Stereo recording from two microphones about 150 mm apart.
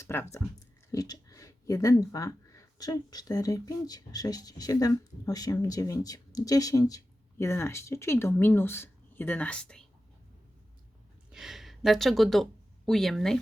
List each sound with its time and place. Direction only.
0.0 s speech: 15° left (ahead or behind)
11.3 s speech: centre (ahead or behind)